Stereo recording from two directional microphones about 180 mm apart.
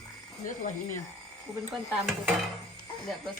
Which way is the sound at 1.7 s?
Centre (ahead or behind).